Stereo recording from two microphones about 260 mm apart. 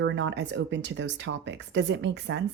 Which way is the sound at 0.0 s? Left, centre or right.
Right.